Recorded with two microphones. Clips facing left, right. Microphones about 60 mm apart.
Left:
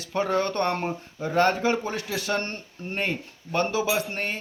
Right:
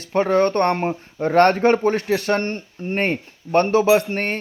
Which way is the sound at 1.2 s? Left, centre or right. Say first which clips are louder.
Right 7 dB; right.